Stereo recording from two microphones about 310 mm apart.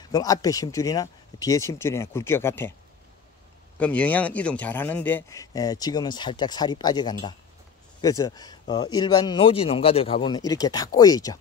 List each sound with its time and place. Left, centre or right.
0.1 s speech: centre
3.8 s speech: centre